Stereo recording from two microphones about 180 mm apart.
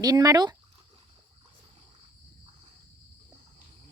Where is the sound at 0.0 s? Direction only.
20° right (ahead or behind).